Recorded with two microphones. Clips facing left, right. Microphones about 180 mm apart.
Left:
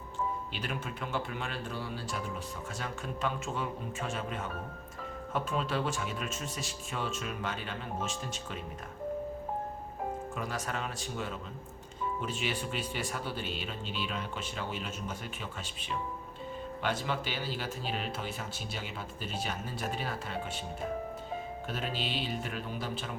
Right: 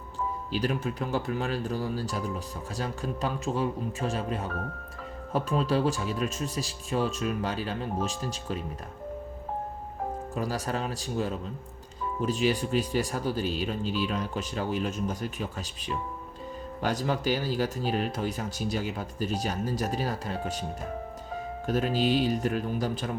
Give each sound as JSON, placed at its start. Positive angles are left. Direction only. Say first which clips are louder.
{"t": 0.5, "sound": "speech", "louder": "right 9 dB", "side_deg": -40}
{"t": 10.3, "sound": "speech", "louder": "right 6 dB", "side_deg": -35}
{"t": 16.8, "sound": "speech", "louder": "right 6 dB", "side_deg": -40}
{"t": 21.7, "sound": "speech", "louder": "right 12 dB", "side_deg": -40}